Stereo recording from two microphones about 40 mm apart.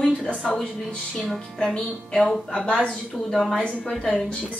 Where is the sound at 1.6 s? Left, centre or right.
Centre.